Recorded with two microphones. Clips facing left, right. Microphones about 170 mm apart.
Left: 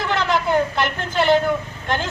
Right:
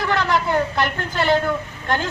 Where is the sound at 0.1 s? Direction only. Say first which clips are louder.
Left 1 dB; 20° left (ahead or behind).